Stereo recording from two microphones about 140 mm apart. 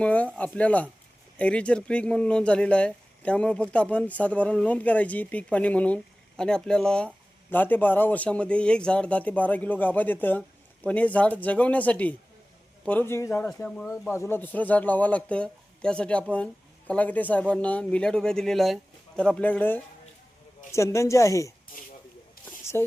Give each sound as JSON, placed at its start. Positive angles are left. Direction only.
{"t": 0.0, "sound": "speech", "side_deg": 10}
{"t": 21.7, "sound": "speech", "side_deg": 75}
{"t": 22.7, "sound": "a sound", "side_deg": 20}